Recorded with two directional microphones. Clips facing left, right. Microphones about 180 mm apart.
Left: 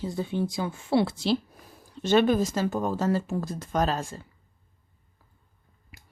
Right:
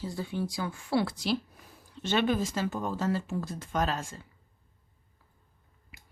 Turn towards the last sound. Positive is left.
turn(degrees=35)  # may be behind; listen again after turning